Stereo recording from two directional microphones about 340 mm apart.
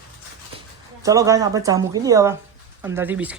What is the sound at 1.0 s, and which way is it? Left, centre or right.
Speech, centre.